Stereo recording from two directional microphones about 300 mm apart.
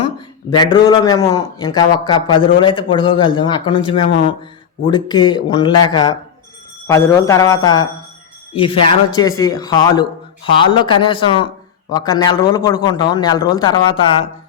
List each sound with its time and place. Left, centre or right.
0.5 s a man's voice: centre